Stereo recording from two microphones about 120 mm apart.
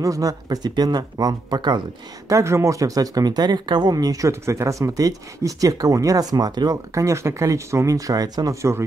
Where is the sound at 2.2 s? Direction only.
25° right (ahead or behind).